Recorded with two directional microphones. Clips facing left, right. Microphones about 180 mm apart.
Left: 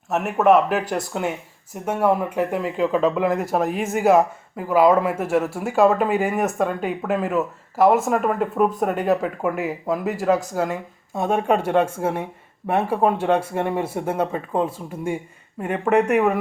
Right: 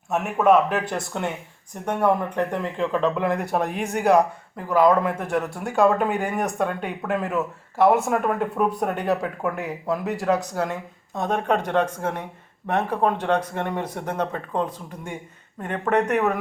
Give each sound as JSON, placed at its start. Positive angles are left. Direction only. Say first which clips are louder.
{"t": 0.1, "sound": "speech", "louder": "left 2 dB", "side_deg": 0}